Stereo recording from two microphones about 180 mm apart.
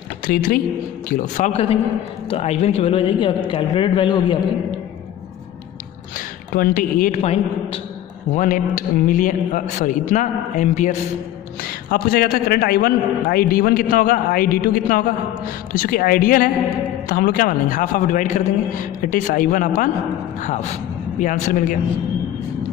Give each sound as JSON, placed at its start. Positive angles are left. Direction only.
{"t": 0.3, "sound": "a man's voice", "side_deg": 55}
{"t": 6.1, "sound": "speech", "side_deg": 50}
{"t": 7.2, "sound": "speech", "side_deg": 35}
{"t": 8.4, "sound": "a man's voice", "side_deg": 45}
{"t": 11.6, "sound": "a man's voice", "side_deg": 55}
{"t": 21.2, "sound": "a man's voice", "side_deg": 45}